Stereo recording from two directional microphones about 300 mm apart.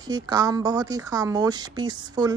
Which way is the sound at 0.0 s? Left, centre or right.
Centre.